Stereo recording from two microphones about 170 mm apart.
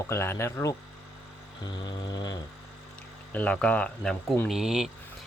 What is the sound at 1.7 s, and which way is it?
Music, 25° left (ahead or behind).